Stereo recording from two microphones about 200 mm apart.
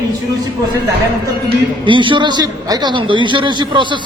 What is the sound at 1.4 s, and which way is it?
Speech, 25° right (ahead or behind).